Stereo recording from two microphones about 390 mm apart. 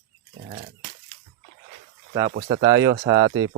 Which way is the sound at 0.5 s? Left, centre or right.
Centre.